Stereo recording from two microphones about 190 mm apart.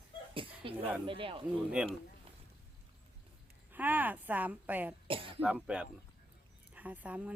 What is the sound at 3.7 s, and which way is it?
Speech, 10° right (ahead or behind).